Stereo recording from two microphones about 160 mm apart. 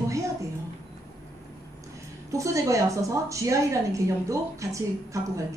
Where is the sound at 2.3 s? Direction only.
20° right (ahead or behind).